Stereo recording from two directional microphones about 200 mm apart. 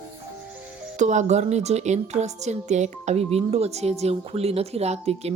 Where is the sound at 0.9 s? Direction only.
35° right (ahead or behind).